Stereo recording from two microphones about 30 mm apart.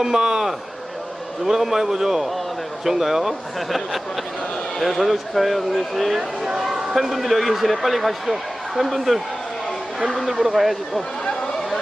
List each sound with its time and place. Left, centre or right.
0.0 s a man's voice: centre
1.5 s a man's voice: centre
6.1 s a man's voice: centre
6.6 s a man's voice: centre
10.2 s a man's voice: centre